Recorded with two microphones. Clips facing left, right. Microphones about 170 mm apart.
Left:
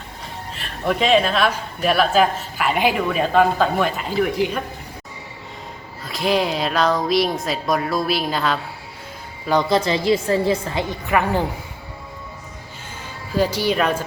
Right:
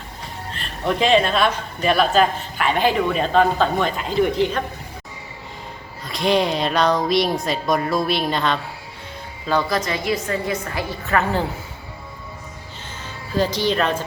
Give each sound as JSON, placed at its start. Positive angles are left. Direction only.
{"t": 0.5, "sound": "speech", "side_deg": 5}
{"t": 6.1, "sound": "speech", "side_deg": 0}
{"t": 9.5, "sound": "a woman's voice", "side_deg": 20}
{"t": 13.3, "sound": "speech", "side_deg": 10}